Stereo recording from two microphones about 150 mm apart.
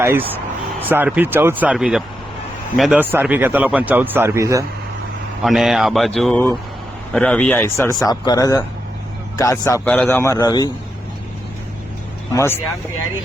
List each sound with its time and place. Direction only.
0.0 s speech: 15° right (ahead or behind)
3.0 s speech: 15° right (ahead or behind)
5.4 s speech: 5° right (ahead or behind)
6.3 s speech: 15° left (ahead or behind)
9.8 s speech: 10° left (ahead or behind); by 10.7 s 25° left (ahead or behind)
12.3 s speech: 20° left (ahead or behind)